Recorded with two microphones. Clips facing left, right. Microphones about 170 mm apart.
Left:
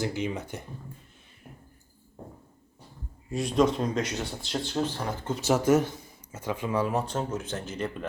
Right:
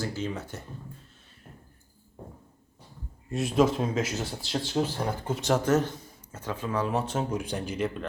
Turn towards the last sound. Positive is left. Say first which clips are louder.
# right 3 dB
turn(degrees=-5)  # may be behind; listen again after turning